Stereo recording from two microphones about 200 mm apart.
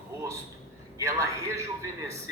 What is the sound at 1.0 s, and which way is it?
Speech, 15° right (ahead or behind).